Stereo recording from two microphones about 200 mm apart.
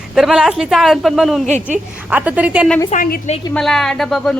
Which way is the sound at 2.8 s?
40° left (ahead or behind).